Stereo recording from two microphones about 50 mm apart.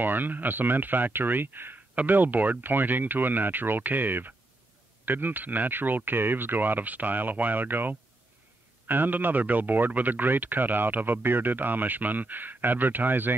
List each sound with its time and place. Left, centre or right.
0.0 s speech: right